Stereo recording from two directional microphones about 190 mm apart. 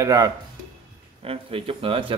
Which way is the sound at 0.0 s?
20° right (ahead or behind).